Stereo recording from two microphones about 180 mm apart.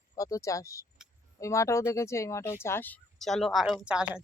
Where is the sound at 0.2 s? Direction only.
15° left (ahead or behind).